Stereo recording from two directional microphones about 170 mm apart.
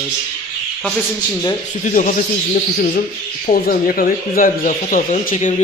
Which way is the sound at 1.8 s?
50° left (ahead or behind).